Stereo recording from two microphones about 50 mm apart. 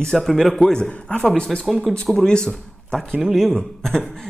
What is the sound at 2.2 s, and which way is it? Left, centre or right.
Speech, centre.